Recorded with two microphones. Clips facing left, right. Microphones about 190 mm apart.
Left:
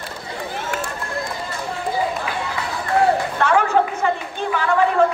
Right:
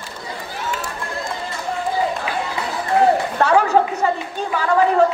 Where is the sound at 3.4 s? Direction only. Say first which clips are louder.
Right 2 dB; 40° right (ahead or behind).